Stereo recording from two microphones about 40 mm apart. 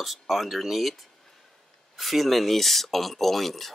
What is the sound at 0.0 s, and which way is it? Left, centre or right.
Speech, centre.